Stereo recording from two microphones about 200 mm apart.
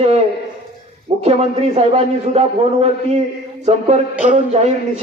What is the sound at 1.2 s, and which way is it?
A man's voice, 30° right (ahead or behind).